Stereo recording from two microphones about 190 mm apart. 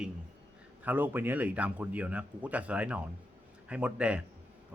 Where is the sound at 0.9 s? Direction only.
10° right (ahead or behind).